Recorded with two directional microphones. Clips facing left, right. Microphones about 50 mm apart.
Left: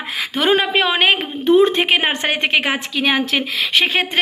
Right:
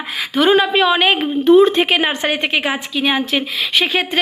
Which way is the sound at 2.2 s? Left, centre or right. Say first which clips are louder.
Even; left.